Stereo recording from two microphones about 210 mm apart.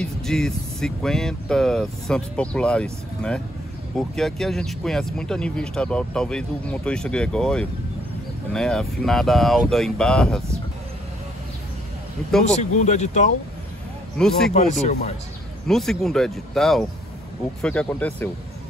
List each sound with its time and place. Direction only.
0.0 s speech: centre (ahead or behind)
12.7 s speech: 35° left (ahead or behind)
14.1 s speech: 5° left (ahead or behind)
14.5 s speech: 35° left (ahead or behind)
15.6 s speech: centre (ahead or behind)